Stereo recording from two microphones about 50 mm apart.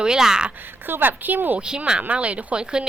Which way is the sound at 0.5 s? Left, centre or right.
Right.